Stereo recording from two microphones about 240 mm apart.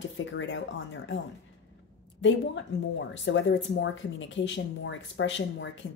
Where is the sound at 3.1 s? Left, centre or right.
Left.